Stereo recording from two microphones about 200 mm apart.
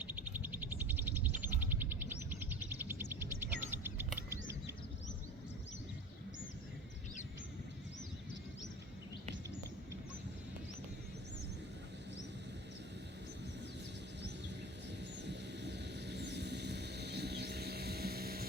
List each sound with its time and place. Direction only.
0.0 s a sound: 10° right (ahead or behind)
2.6 s bird: 10° right (ahead or behind)
15.2 s vehicle: 60° right (ahead or behind)